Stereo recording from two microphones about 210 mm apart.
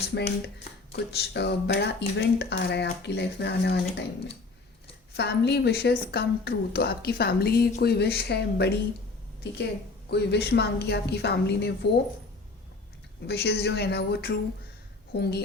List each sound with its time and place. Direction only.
0.1 s speech: 55° left (ahead or behind)
5.1 s speech: 55° left (ahead or behind)
10.1 s speech: 50° left (ahead or behind)
13.2 s speech: 50° left (ahead or behind)